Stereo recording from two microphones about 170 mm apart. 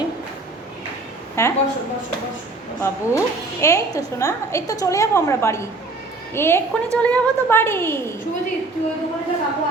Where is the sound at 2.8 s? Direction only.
15° left (ahead or behind).